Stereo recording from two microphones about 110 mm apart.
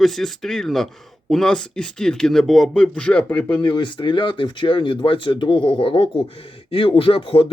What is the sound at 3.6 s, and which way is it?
Speech, 50° left (ahead or behind).